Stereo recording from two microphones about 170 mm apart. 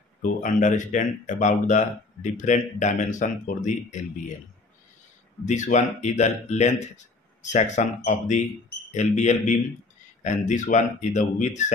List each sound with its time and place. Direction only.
0.2 s speech: 50° left (ahead or behind)
5.4 s speech: 45° left (ahead or behind)